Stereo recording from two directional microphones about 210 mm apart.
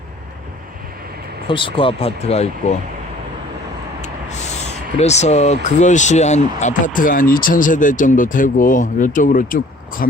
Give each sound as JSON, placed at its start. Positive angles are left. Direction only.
{"t": 1.5, "sound": "speech", "side_deg": 25}
{"t": 4.9, "sound": "speech", "side_deg": 30}